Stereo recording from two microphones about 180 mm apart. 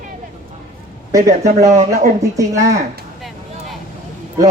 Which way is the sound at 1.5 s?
40° right (ahead or behind).